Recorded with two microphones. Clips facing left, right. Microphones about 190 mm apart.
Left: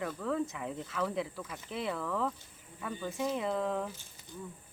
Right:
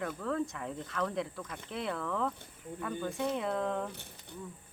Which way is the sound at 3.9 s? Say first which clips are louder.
Right 1 dB; 65° right (ahead or behind).